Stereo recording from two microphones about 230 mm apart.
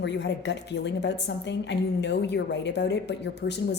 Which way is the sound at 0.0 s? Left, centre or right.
Left.